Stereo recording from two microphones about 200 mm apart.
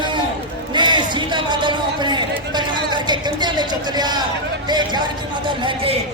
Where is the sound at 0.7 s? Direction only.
25° right (ahead or behind).